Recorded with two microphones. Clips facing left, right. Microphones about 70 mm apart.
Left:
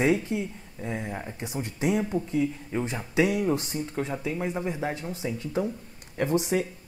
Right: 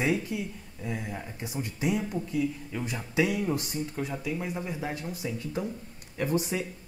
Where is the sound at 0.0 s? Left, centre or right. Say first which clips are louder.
Left 4 dB; left.